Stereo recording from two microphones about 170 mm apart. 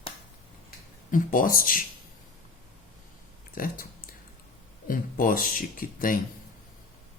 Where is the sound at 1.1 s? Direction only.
55° left (ahead or behind).